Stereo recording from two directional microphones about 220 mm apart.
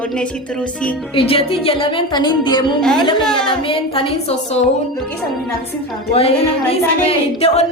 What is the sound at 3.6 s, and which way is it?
Speech, 25° left (ahead or behind).